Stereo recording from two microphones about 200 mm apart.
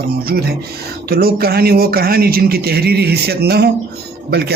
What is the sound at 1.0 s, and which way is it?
Speech, 50° right (ahead or behind).